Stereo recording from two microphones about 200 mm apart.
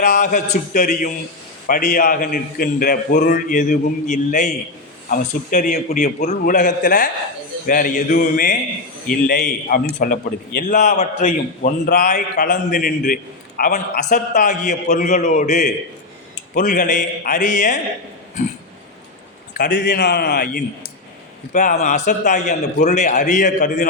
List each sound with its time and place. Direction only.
0.0 s a man's voice: 40° left (ahead or behind)
10.8 s a man's voice: 35° left (ahead or behind)
19.7 s a man's voice: 60° left (ahead or behind)
21.5 s a man's voice: 40° left (ahead or behind)